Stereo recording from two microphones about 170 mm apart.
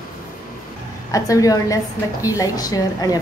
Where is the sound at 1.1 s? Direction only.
20° left (ahead or behind).